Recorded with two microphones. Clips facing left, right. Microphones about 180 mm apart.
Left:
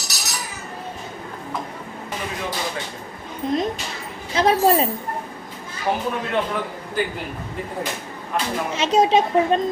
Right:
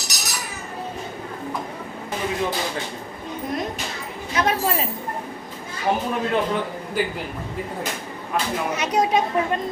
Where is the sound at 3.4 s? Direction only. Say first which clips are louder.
Left 6 dB; 25° left (ahead or behind).